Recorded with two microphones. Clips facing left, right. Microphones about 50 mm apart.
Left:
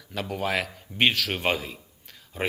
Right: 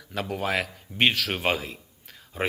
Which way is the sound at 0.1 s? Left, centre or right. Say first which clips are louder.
Even; centre.